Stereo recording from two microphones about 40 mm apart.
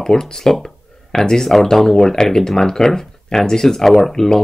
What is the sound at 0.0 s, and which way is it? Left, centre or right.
Speech, centre.